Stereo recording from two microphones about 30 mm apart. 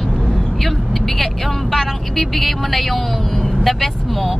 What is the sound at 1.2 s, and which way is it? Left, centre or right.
A woman's voice, centre.